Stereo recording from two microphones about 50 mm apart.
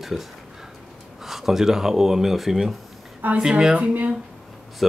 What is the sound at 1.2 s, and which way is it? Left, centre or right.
Speech, centre.